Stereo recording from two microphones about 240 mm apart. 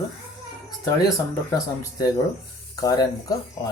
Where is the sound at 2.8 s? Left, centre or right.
Centre.